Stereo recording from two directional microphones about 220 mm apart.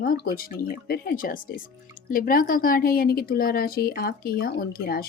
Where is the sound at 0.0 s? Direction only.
45° left (ahead or behind).